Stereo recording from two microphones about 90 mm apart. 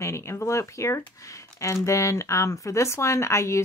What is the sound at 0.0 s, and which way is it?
Speech, 30° left (ahead or behind).